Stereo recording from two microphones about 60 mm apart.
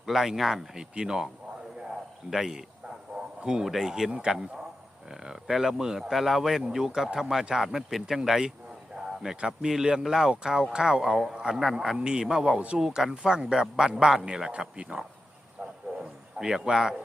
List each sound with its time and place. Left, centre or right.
0.0 s speech: centre
2.3 s speech: centre
12.8 s speech: centre
16.0 s a sound: centre